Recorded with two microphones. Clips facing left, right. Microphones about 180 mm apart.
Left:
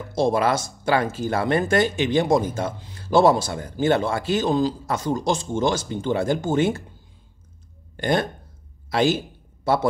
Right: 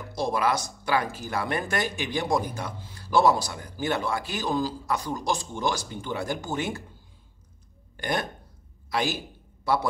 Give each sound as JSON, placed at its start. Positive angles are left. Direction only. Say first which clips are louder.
{"t": 0.0, "sound": "speech", "louder": "left 6 dB", "side_deg": 25}
{"t": 7.9, "sound": "speech", "louder": "left 7 dB", "side_deg": 30}